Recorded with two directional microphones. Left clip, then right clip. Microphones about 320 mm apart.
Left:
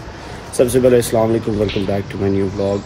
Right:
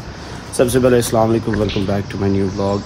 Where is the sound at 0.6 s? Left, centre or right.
Centre.